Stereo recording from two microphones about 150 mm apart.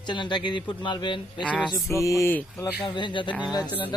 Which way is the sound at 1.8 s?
20° left (ahead or behind).